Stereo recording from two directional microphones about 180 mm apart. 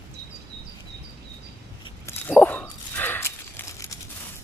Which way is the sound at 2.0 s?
10° left (ahead or behind).